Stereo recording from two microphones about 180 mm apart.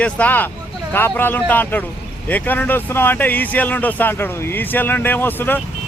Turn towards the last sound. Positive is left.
turn(degrees=10)  # may be behind; listen again after turning